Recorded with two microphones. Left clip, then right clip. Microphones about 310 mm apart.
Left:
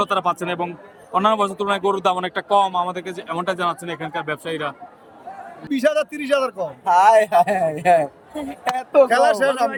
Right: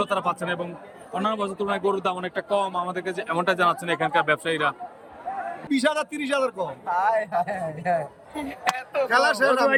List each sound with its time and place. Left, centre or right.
0.0 s a man's voice: centre
5.8 s a man's voice: centre
6.8 s a man's voice: left
9.0 s speech: centre